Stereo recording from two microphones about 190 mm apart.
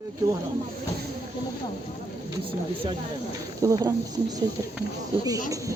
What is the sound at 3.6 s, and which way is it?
Speech, 20° right (ahead or behind).